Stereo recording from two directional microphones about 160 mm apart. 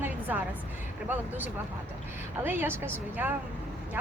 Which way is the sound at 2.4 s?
15° right (ahead or behind).